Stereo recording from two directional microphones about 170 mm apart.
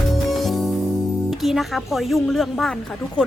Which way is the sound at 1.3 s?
Centre (ahead or behind).